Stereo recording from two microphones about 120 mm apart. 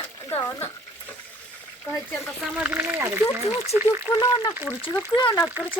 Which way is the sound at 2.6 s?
15° right (ahead or behind).